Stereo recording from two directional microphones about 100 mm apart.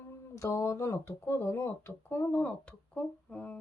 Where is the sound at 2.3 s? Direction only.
10° left (ahead or behind).